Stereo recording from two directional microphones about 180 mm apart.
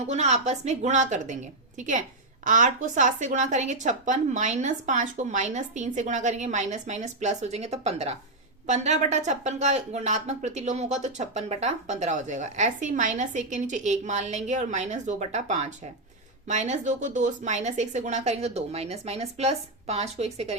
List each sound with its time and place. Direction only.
0.1 s a woman's voice: 40° right (ahead or behind)